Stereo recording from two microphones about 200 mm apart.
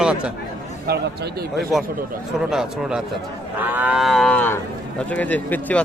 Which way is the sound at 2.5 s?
5° right (ahead or behind).